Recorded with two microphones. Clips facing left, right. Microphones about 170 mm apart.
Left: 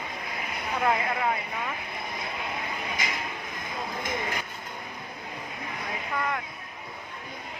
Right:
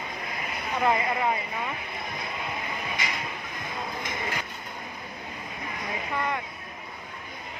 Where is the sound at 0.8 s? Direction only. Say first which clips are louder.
Right 1 dB; 5° right (ahead or behind).